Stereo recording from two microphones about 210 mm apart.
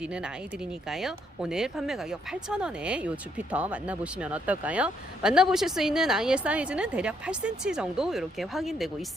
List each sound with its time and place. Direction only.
0.0 s speech: 5° right (ahead or behind)